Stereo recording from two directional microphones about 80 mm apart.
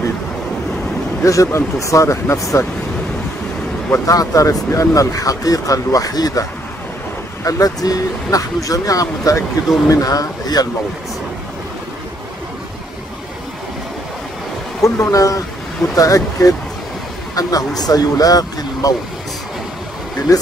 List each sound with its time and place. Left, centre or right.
1.2 s speech: left
3.9 s speech: left
7.4 s speech: left
14.8 s speech: left
20.3 s speech: left